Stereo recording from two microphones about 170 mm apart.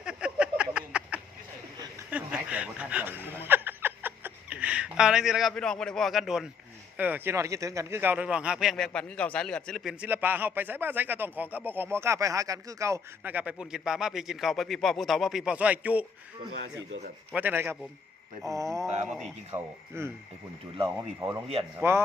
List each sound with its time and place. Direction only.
0.0 s a sound: 5° right (ahead or behind)
2.0 s snicker: 5° right (ahead or behind)
6.9 s a man's voice: 10° right (ahead or behind)
17.3 s a man's voice: 10° right (ahead or behind)
18.4 s mantra: 20° right (ahead or behind)
19.5 s a man's voice: 15° right (ahead or behind)